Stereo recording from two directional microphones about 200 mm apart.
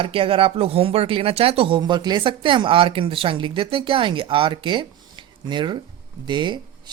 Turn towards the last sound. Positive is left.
turn(degrees=-20)  # may be behind; listen again after turning